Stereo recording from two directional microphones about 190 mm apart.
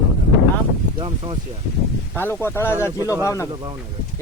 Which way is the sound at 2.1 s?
10° left (ahead or behind).